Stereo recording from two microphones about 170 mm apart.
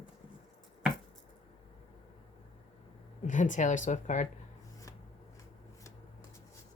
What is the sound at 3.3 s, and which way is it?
Speech, 45° left (ahead or behind).